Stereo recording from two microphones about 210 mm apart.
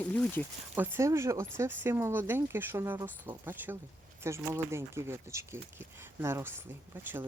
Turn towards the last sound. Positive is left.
turn(degrees=-10)  # may be behind; listen again after turning